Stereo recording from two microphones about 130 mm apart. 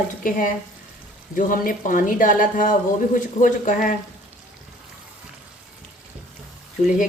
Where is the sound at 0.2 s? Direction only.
90° left.